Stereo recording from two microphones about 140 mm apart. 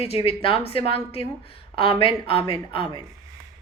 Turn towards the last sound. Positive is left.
turn(degrees=40)  # may be behind; listen again after turning